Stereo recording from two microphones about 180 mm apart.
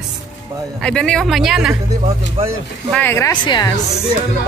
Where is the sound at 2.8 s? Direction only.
10° left (ahead or behind).